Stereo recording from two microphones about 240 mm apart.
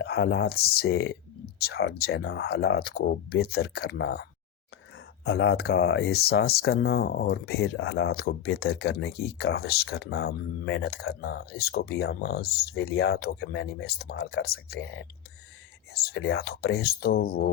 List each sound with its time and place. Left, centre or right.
0.0 s speech: left